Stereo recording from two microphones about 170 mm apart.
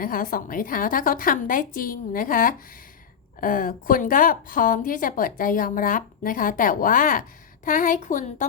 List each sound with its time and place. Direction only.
0.0 s a woman's voice: 55° left (ahead or behind)